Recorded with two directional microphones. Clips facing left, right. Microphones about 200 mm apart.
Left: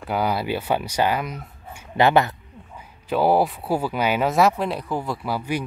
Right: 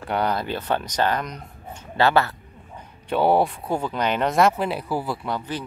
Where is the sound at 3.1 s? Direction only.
Centre (ahead or behind).